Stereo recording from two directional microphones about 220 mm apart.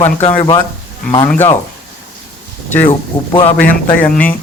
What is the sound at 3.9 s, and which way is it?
Speech, 10° left (ahead or behind).